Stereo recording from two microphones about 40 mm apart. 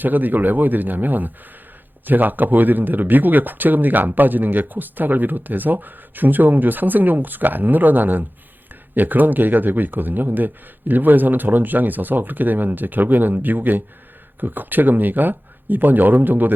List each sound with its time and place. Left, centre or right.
0.0 s speech: right